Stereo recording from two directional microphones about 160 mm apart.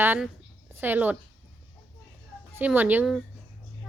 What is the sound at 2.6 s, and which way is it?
Speech, 10° right (ahead or behind).